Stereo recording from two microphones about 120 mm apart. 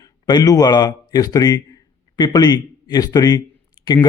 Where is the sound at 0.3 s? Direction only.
35° left (ahead or behind).